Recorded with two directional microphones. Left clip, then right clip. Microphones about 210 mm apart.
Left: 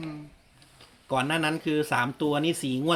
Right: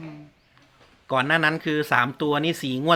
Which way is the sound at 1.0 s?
20° right (ahead or behind).